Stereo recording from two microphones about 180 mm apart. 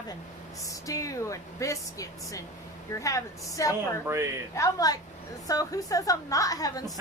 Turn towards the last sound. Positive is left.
turn(degrees=20)  # may be behind; listen again after turning